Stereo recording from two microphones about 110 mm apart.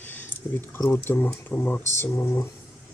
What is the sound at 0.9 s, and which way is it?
Speech, 20° left (ahead or behind).